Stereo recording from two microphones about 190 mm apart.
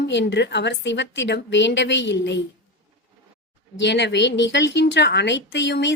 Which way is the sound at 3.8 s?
65° left (ahead or behind).